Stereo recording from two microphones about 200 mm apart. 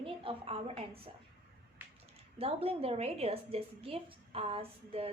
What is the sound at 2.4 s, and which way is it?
A woman's voice, 30° right (ahead or behind).